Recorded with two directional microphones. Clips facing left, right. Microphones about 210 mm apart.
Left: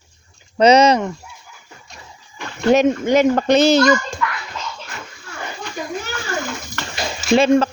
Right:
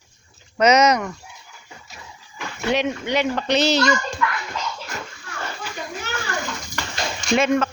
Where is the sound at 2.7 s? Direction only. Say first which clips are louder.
Left 8 dB; 45° left (ahead or behind).